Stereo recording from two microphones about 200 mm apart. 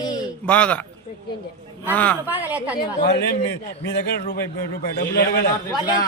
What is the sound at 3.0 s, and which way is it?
Speech, 55° left (ahead or behind).